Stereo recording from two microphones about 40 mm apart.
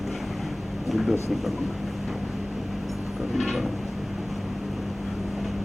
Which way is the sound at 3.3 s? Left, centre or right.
Centre.